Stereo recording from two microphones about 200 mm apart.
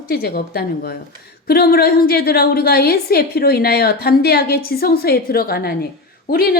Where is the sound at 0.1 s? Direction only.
50° left (ahead or behind).